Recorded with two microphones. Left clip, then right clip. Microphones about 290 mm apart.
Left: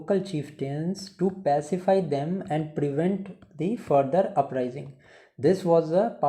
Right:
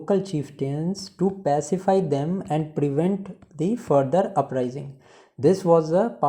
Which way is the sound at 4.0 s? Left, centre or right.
Right.